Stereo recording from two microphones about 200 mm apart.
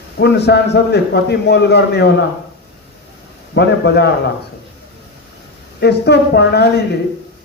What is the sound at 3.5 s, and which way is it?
Speech, 60° left (ahead or behind).